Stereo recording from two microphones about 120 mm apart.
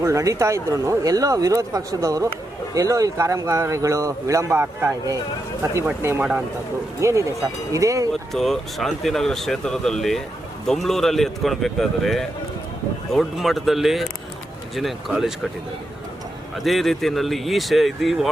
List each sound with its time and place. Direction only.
0.0 s speech: 25° right (ahead or behind)
6.0 s speech: 20° right (ahead or behind)
8.1 s speech: centre (ahead or behind)
16.6 s speech: centre (ahead or behind)